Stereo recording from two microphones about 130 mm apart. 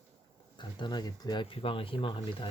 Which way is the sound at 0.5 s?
35° left (ahead or behind).